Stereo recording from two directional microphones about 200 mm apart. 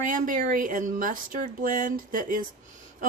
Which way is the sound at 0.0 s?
40° right (ahead or behind).